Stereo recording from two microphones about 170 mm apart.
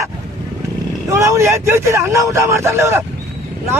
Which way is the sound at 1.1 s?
15° right (ahead or behind).